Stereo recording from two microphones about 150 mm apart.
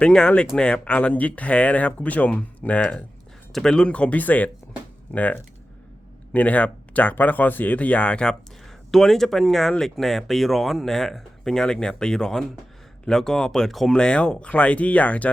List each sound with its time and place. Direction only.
0.0 s speech: 5° left (ahead or behind)